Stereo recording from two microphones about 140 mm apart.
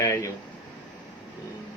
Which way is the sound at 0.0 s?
20° left (ahead or behind).